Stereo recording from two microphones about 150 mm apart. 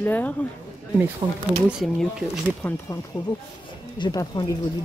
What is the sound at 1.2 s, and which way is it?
Speech, 30° right (ahead or behind).